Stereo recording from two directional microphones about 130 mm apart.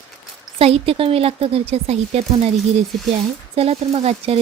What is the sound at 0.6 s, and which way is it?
Speech, 50° right (ahead or behind).